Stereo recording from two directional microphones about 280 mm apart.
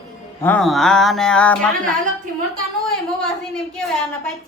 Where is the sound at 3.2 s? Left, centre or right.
Centre.